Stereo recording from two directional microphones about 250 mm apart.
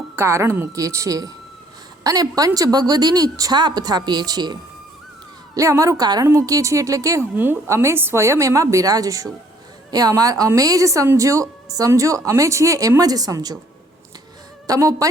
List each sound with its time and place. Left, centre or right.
0.2 s a woman's voice: centre
5.5 s a woman's voice: centre
14.7 s a woman's voice: centre